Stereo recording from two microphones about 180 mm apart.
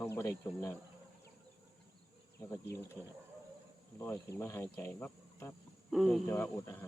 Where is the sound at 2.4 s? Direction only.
15° left (ahead or behind).